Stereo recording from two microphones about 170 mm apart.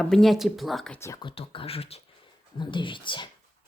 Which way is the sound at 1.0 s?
20° left (ahead or behind).